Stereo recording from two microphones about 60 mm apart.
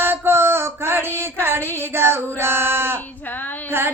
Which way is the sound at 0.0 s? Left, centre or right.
Right.